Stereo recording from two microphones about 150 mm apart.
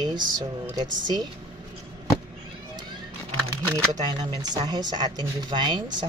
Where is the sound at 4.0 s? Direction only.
30° right (ahead or behind).